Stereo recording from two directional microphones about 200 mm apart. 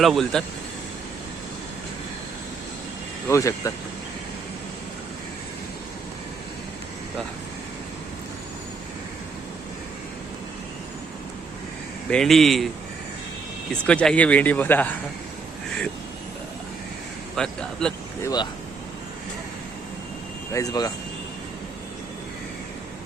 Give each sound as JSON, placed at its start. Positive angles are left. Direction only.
{"t": 0.0, "sound": "speech", "side_deg": 0}
{"t": 3.2, "sound": "speech", "side_deg": 15}
{"t": 12.1, "sound": "speech", "side_deg": 0}
{"t": 13.8, "sound": "speech", "side_deg": 5}
{"t": 17.3, "sound": "speech", "side_deg": 5}
{"t": 18.2, "sound": "speech", "side_deg": 20}
{"t": 20.5, "sound": "speech", "side_deg": 15}